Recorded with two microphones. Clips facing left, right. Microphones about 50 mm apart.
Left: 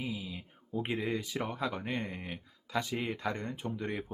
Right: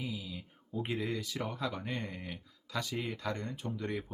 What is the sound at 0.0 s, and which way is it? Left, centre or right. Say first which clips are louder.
Speech: left 2 dB; left.